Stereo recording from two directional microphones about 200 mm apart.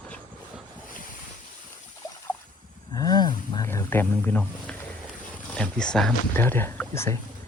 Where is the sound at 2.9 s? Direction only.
20° left (ahead or behind).